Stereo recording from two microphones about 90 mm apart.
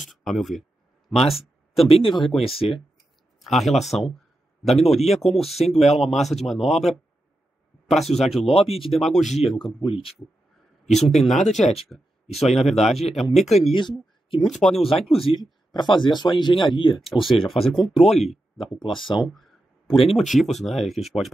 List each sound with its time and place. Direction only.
0.0 s a sound: centre (ahead or behind)
1.9 s speech: 75° left (ahead or behind)
2.4 s speech: 90° left
3.3 s speech: centre (ahead or behind)
9.8 s speech: 75° left (ahead or behind)
10.9 s speech: centre (ahead or behind)
13.7 s speech: 70° left (ahead or behind)
14.4 s speech: centre (ahead or behind)
14.8 s speech: 90° left
15.1 s speech: 75° left (ahead or behind)
16.9 s speech: centre (ahead or behind)
18.8 s speech: 65° left (ahead or behind)
20.1 s speech: centre (ahead or behind)